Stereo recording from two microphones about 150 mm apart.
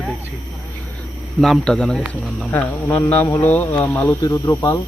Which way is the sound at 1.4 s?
Centre (ahead or behind).